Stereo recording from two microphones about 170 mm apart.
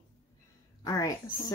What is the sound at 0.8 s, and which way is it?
Speech, 20° left (ahead or behind).